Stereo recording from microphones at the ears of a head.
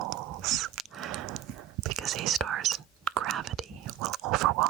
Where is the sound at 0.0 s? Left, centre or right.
Right.